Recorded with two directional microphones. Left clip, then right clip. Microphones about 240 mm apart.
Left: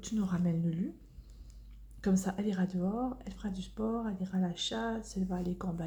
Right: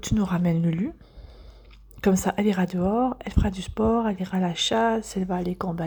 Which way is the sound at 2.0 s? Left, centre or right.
Right.